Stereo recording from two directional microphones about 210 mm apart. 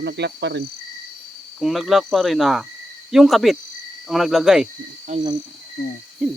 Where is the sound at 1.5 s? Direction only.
Centre (ahead or behind).